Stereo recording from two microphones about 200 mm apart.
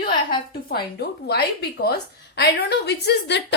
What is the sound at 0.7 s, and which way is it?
A woman's voice, 55° left (ahead or behind).